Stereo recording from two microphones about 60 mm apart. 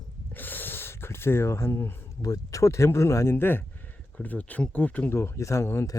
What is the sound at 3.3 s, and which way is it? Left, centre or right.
Speech, left.